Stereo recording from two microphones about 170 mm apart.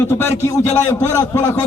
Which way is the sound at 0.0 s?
15° left (ahead or behind).